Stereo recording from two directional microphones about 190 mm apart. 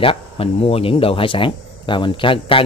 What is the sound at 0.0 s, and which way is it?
Speech, 30° left (ahead or behind).